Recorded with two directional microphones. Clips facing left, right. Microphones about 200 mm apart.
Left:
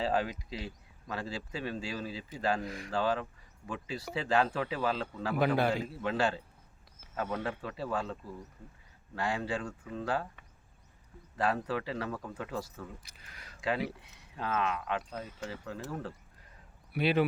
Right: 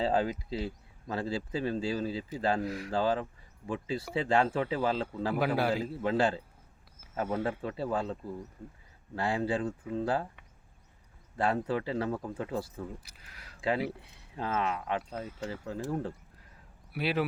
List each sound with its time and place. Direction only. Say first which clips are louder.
0.0 s speech: right 3 dB; 25° right (ahead or behind)
2.6 s speech: right 5 dB; 5° right (ahead or behind)
2.9 s speech: right 1 dB; 30° right (ahead or behind)
5.4 s speech: left 1 dB; 5° right (ahead or behind)
5.8 s speech: right 3 dB; 30° right (ahead or behind)
7.4 s speech: right 4 dB; 30° right (ahead or behind)
11.3 s speech: right 2 dB; 25° right (ahead or behind)
13.0 s speech: even; 5° right (ahead or behind)
13.6 s speech: right 2 dB; 30° right (ahead or behind)
16.9 s speech: left 3 dB; 5° right (ahead or behind)